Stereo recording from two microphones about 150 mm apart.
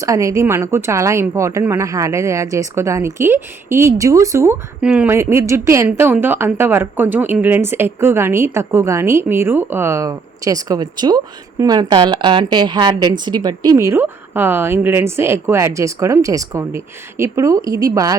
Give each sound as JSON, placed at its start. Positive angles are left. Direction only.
{"t": 0.0, "sound": "a woman's voice", "side_deg": -20}
{"t": 4.8, "sound": "a woman's voice", "side_deg": -10}